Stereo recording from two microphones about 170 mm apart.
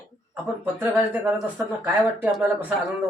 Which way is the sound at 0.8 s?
10° right (ahead or behind).